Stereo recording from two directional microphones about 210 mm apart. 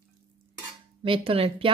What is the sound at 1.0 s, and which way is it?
Speech, 25° right (ahead or behind).